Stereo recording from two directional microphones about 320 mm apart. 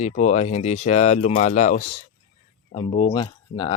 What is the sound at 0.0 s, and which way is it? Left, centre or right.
Speech, left.